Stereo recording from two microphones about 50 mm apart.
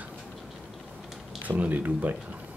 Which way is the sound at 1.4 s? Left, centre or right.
Right.